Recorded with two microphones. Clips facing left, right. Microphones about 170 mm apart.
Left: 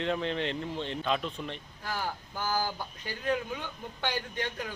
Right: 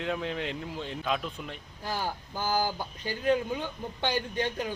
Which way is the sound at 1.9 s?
25° right (ahead or behind).